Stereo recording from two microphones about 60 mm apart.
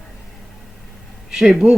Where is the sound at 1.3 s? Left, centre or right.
Centre.